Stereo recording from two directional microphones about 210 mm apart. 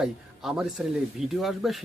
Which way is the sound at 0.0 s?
Centre (ahead or behind).